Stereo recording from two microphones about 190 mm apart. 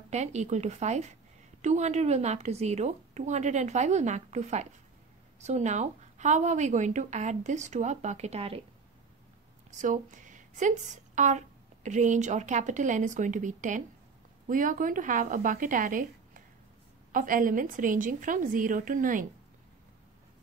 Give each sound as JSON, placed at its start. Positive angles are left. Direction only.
{"t": 0.1, "sound": "a woman's voice", "side_deg": -35}
{"t": 9.7, "sound": "a woman's voice", "side_deg": -40}